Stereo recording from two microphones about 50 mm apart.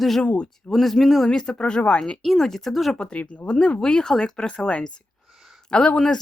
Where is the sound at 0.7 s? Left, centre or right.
Centre.